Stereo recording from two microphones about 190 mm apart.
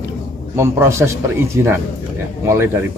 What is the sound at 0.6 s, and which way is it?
Speech, 15° right (ahead or behind).